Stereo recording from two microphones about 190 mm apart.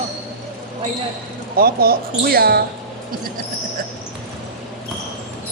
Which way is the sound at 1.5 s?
50° right (ahead or behind).